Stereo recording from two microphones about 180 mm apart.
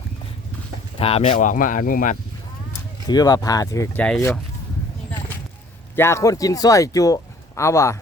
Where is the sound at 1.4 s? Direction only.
45° left (ahead or behind).